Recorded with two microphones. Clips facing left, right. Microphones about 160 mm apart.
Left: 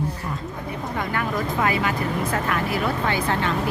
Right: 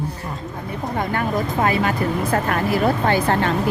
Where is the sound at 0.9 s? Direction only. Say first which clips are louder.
Right 4 dB; 35° right (ahead or behind).